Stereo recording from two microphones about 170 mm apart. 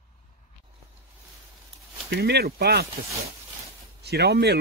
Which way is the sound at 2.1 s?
70° right (ahead or behind).